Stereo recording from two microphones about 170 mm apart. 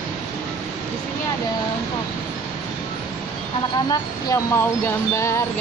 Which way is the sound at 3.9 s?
20° left (ahead or behind).